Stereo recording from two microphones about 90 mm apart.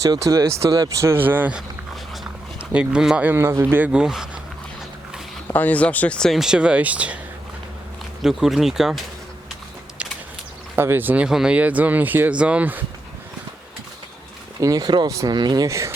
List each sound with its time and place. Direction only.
0.1 s speech: 40° right (ahead or behind); by 1.5 s 20° right (ahead or behind)
2.6 s speech: 10° right (ahead or behind)
3.2 s speech: 30° right (ahead or behind); by 4.3 s 5° right (ahead or behind)
5.5 s speech: 20° left (ahead or behind)
6.1 s speech: 5° left (ahead or behind)
6.4 s speech: 10° right (ahead or behind)
8.2 s speech: 5° right (ahead or behind)
10.0 s a sound: 15° right (ahead or behind)
10.8 s speech: 25° right (ahead or behind)
11.3 s speech: 10° right (ahead or behind)
14.6 s speech: 45° right (ahead or behind)
15.0 s speech: 40° right (ahead or behind)
15.4 s speech: 55° right (ahead or behind)
15.6 s speech: 35° right (ahead or behind)